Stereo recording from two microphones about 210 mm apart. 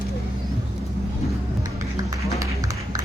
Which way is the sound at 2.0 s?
15° right (ahead or behind).